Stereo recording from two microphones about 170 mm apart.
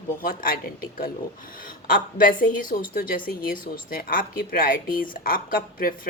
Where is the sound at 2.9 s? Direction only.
55° left (ahead or behind).